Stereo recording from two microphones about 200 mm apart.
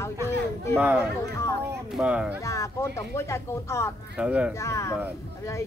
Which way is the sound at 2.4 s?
15° left (ahead or behind).